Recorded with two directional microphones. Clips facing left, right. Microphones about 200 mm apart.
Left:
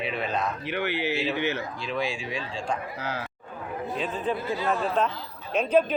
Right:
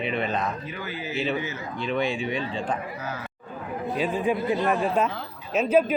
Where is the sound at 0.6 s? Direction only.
70° left (ahead or behind).